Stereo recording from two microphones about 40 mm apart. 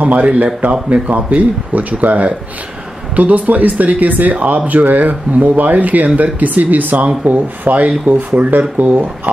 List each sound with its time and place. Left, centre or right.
0.0 s speech: right